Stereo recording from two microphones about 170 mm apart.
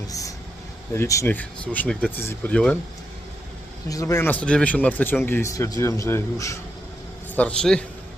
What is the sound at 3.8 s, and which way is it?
Speech, 20° left (ahead or behind).